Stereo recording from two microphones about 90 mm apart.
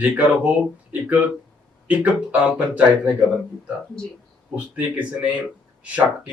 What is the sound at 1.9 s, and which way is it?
Speech, 15° right (ahead or behind).